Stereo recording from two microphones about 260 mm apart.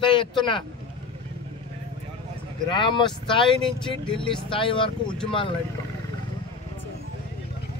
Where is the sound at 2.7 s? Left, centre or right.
Centre.